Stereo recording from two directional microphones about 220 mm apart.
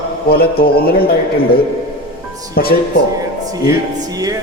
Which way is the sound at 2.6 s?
45° left (ahead or behind).